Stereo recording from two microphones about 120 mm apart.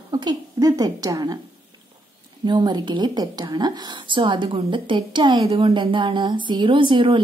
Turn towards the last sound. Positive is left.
turn(degrees=-45)  # may be behind; listen again after turning